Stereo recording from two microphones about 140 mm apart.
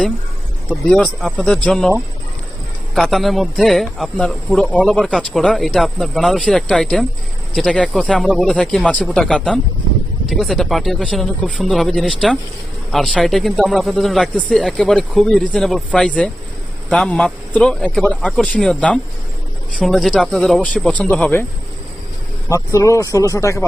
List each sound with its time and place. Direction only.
0.9 s speech: 5° left (ahead or behind)
22.4 s speech: 20° left (ahead or behind)